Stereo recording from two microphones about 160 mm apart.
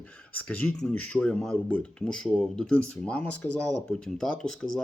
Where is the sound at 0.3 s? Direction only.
5° left (ahead or behind).